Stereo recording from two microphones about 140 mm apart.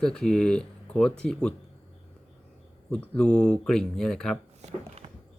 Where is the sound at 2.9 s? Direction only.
5° left (ahead or behind).